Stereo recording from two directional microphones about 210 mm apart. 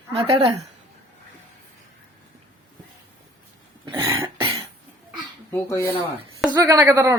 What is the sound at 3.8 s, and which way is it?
Cough, 20° right (ahead or behind).